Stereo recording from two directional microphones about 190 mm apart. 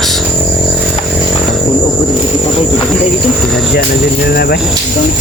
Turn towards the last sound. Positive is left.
turn(degrees=55)  # may be behind; listen again after turning